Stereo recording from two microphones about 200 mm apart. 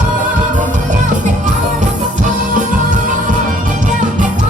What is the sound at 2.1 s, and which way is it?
Music, 40° right (ahead or behind).